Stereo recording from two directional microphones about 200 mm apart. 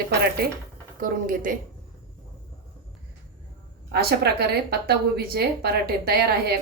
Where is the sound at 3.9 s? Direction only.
50° right (ahead or behind).